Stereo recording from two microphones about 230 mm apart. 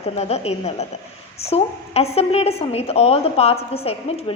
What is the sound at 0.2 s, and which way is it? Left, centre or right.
A woman's voice, left.